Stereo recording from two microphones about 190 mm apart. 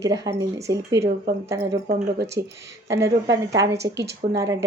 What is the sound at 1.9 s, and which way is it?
Speech, 55° right (ahead or behind).